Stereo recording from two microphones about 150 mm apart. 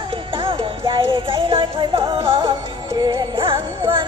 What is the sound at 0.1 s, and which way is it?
Music, 35° right (ahead or behind).